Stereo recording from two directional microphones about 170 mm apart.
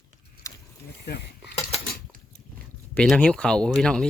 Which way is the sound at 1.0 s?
75° left (ahead or behind).